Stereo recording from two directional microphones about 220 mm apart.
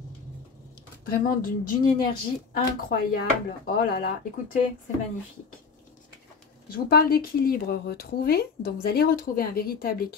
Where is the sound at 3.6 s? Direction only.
40° left (ahead or behind).